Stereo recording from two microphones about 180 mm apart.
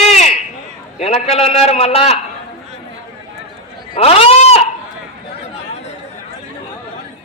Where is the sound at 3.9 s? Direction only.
35° left (ahead or behind).